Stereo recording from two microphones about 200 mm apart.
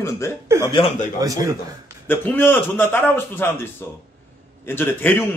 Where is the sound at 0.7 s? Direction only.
35° left (ahead or behind).